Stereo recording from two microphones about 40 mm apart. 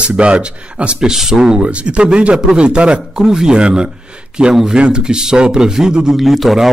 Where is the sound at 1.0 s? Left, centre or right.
Centre.